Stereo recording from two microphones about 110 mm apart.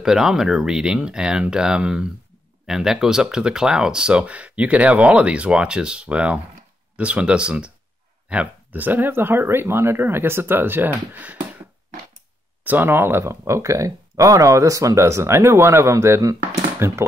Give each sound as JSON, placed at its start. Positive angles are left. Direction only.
{"t": 0.0, "sound": "speech", "side_deg": -5}
{"t": 12.6, "sound": "speech", "side_deg": -20}